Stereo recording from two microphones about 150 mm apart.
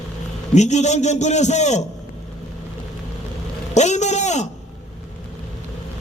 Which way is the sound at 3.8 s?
50° left (ahead or behind).